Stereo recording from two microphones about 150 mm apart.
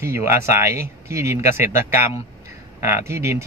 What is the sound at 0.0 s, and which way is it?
Speech, 15° right (ahead or behind).